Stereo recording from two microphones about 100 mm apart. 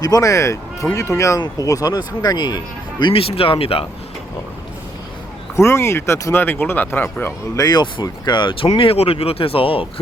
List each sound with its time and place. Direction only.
0.0 s speech: 35° left (ahead or behind)
3.0 s speech: 65° left (ahead or behind)
5.5 s speech: 30° left (ahead or behind)
7.5 s speech: 40° left (ahead or behind); by 8.7 s 60° left (ahead or behind)
8.8 s speech: 70° left (ahead or behind)